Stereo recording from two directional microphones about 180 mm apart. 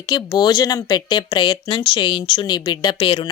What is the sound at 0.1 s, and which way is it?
Speech, 20° left (ahead or behind).